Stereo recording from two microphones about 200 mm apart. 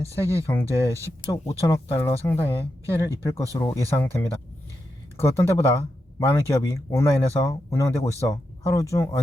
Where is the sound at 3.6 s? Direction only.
15° left (ahead or behind).